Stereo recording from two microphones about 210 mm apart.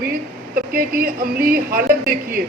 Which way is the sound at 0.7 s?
40° right (ahead or behind).